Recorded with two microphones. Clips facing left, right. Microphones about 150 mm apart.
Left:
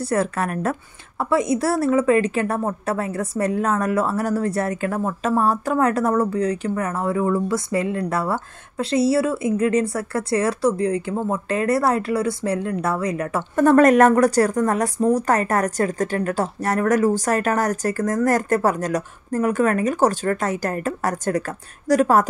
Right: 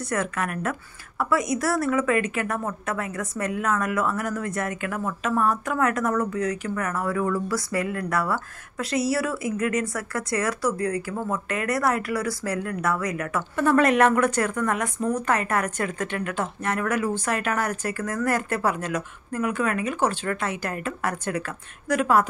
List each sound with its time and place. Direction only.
0.0 s a woman's voice: 35° left (ahead or behind)
13.6 s a woman's voice: 40° left (ahead or behind)